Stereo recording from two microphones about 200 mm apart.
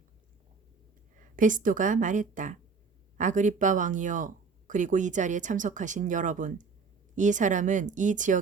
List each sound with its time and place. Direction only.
1.4 s speech: 40° right (ahead or behind)